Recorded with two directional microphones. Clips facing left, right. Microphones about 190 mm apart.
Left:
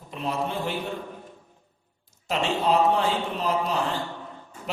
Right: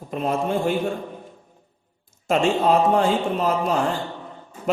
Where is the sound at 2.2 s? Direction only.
50° right (ahead or behind).